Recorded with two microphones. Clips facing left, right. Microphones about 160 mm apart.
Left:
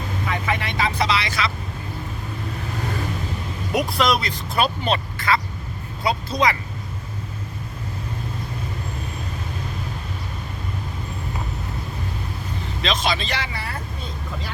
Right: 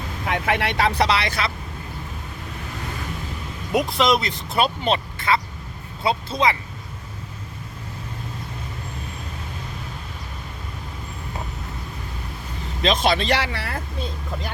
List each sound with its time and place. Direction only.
0.3 s speech: 65° right (ahead or behind)
3.8 s speech: 20° right (ahead or behind)
12.8 s speech: 55° right (ahead or behind); by 13.7 s 80° right